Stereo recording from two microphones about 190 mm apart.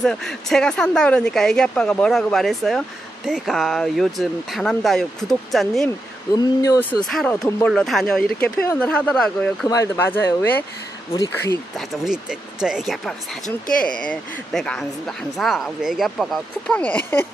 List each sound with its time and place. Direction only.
0.0 s a woman's voice: 5° left (ahead or behind)
6.3 s speech: 20° left (ahead or behind)
7.1 s a woman's voice: centre (ahead or behind)
9.7 s speech: 15° left (ahead or behind)
11.7 s a woman's voice: centre (ahead or behind)